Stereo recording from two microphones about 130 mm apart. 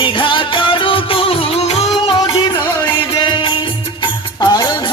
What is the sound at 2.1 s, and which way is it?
Music, 40° left (ahead or behind).